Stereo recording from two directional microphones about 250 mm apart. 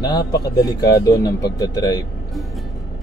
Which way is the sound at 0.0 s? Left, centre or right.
Centre.